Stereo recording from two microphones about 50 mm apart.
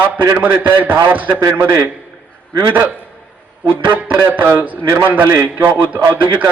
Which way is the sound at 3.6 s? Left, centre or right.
Right.